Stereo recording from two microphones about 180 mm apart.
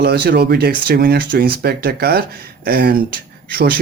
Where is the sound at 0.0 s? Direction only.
65° right (ahead or behind).